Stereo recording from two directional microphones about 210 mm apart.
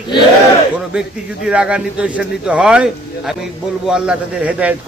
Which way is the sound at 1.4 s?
5° right (ahead or behind).